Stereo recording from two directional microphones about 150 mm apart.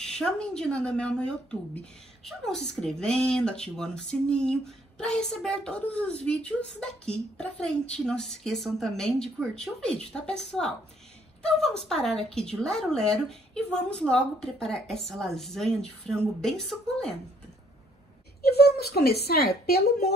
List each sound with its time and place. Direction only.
0.0 s speech: 5° left (ahead or behind)
11.4 s speech: 5° left (ahead or behind)
18.4 s a woman's voice: 90° left